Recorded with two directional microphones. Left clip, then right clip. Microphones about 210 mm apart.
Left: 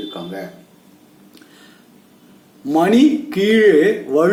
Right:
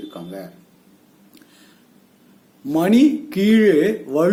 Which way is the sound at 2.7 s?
40° right (ahead or behind).